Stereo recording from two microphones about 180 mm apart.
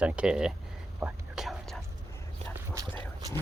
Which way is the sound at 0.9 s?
10° right (ahead or behind).